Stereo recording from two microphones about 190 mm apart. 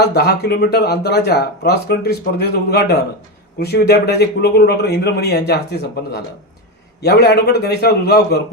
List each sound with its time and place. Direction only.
0.0 s speech: 60° left (ahead or behind)